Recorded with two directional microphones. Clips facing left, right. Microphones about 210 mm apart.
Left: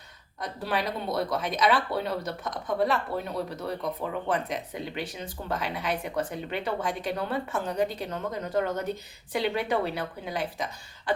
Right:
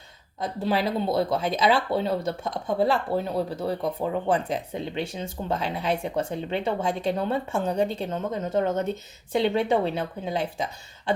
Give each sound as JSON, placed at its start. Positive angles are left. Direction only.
{"t": 0.3, "sound": "speech", "side_deg": -25}